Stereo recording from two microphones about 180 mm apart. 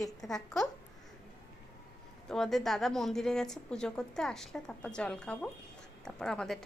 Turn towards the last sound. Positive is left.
turn(degrees=5)  # may be behind; listen again after turning